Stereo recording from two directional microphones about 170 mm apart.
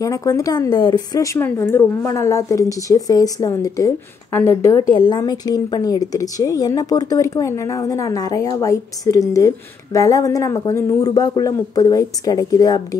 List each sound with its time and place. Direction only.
0.0 s a woman's voice: 20° left (ahead or behind)